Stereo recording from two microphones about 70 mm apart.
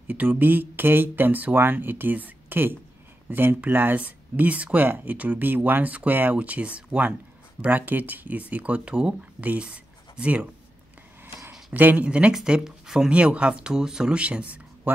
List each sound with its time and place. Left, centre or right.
0.1 s speech: right
11.7 s speech: right